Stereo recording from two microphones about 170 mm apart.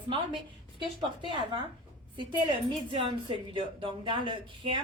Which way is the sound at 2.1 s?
30° right (ahead or behind).